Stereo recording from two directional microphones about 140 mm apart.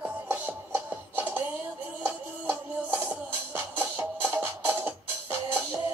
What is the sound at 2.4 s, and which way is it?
Music, 10° right (ahead or behind).